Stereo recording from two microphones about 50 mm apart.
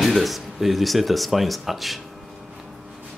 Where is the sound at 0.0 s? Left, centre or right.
Centre.